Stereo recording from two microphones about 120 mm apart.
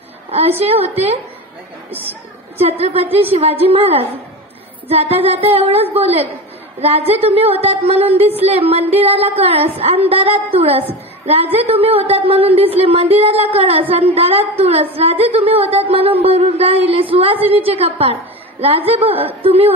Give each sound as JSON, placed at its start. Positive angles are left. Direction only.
{"t": 0.3, "sound": "a woman's voice", "side_deg": -55}
{"t": 2.6, "sound": "a woman's voice", "side_deg": -55}
{"t": 8.2, "sound": "a sound", "side_deg": -55}